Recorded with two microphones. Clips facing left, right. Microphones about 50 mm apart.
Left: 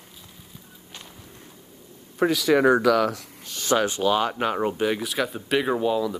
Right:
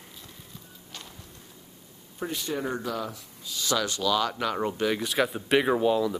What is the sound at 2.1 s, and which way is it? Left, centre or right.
Speech, left.